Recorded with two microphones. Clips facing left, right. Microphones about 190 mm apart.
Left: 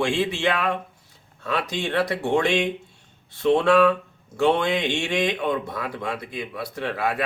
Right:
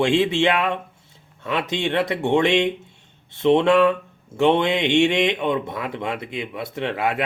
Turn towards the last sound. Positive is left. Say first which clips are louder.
# right 2 dB
turn(degrees=-20)  # may be behind; listen again after turning